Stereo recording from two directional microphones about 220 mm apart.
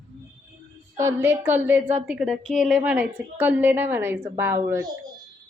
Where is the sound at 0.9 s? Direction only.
10° right (ahead or behind).